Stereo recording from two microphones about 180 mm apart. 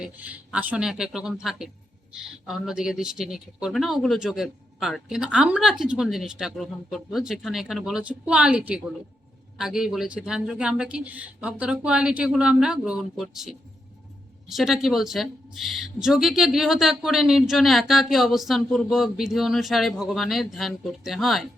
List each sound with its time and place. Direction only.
0.0 s a woman's voice: 5° right (ahead or behind)